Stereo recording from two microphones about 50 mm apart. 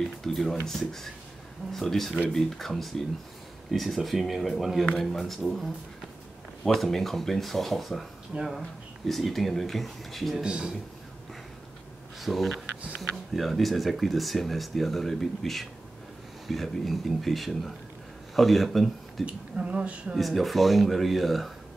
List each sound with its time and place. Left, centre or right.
0.2 s speech: centre
8.4 s a man's voice: centre
9.0 s speech: centre
10.3 s a man's voice: centre
12.2 s speech: centre
19.2 s speech: right
20.2 s speech: centre